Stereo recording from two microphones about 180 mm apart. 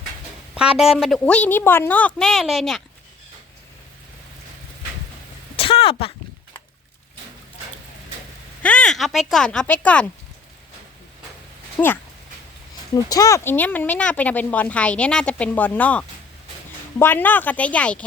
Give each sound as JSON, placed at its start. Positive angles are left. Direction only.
{"t": 0.8, "sound": "a woman's voice", "side_deg": 0}
{"t": 5.5, "sound": "a sound", "side_deg": 30}
{"t": 8.6, "sound": "a woman's voice", "side_deg": 5}
{"t": 11.8, "sound": "a woman's voice", "side_deg": 5}
{"t": 12.9, "sound": "speech", "side_deg": 20}